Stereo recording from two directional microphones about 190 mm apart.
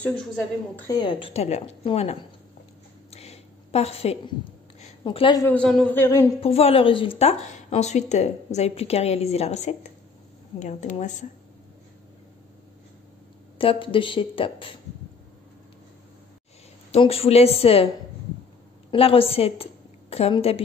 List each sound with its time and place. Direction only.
0.0 s a woman's voice: 5° left (ahead or behind)
0.7 s a woman's voice: 20° left (ahead or behind); by 2.1 s 35° left (ahead or behind)
3.1 s a sound: 35° left (ahead or behind)
5.4 s speech: 5° left (ahead or behind)
6.4 s a woman's voice: 30° left (ahead or behind)
13.6 s a woman's voice: 25° left (ahead or behind)
16.9 s a woman's voice: 30° left (ahead or behind)
18.9 s a woman's voice: 30° left (ahead or behind)